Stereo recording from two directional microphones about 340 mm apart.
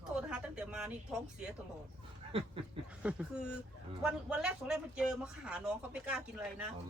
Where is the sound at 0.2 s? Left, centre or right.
Centre.